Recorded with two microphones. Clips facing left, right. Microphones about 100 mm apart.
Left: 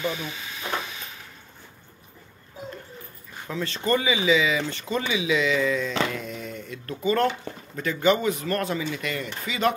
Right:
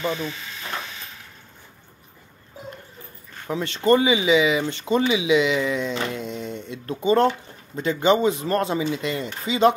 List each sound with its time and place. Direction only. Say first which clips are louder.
3.4 s speech: right 6 dB; 30° right (ahead or behind)